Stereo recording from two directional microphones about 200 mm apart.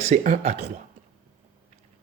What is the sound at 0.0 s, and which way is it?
Speech, 35° right (ahead or behind).